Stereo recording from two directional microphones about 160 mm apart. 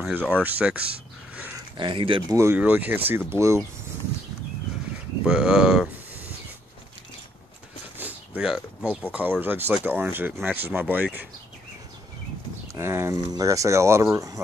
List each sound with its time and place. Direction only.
0.0 s speech: 10° right (ahead or behind)
1.8 s speech: 30° right (ahead or behind)
2.3 s speech: 15° right (ahead or behind)
5.2 s speech: 5° right (ahead or behind)
8.0 s a sound: 10° right (ahead or behind)
9.1 s speech: 10° right (ahead or behind)
12.7 s speech: 15° right (ahead or behind)